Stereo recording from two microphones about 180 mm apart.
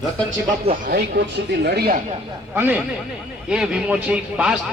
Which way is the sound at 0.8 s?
65° right (ahead or behind).